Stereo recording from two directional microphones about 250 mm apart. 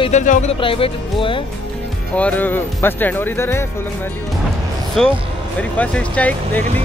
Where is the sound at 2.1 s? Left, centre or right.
Centre.